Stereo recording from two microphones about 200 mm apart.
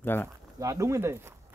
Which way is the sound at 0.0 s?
10° left (ahead or behind).